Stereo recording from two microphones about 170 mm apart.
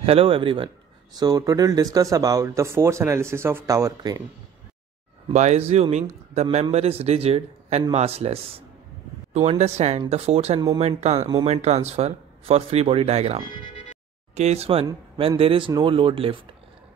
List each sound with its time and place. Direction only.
0.0 s speech: 35° right (ahead or behind)
5.3 s speech: 45° right (ahead or behind)